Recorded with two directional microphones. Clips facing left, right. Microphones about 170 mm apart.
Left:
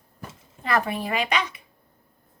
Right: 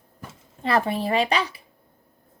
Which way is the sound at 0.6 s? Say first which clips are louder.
Right 3 dB; 30° right (ahead or behind).